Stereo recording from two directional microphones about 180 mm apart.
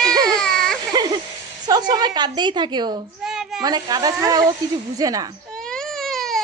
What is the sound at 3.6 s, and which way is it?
Speech, 20° right (ahead or behind).